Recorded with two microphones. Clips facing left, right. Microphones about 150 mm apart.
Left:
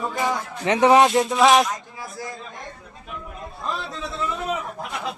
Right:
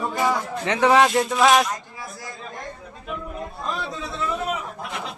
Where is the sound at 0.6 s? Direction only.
20° left (ahead or behind).